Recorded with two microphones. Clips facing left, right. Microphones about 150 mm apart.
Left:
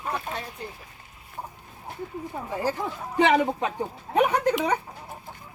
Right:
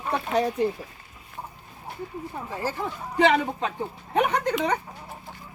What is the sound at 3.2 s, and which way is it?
A woman's voice, 20° left (ahead or behind).